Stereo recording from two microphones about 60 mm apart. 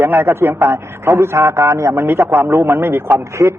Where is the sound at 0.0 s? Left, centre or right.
Right.